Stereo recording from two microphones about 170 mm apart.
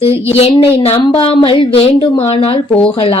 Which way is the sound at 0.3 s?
35° left (ahead or behind).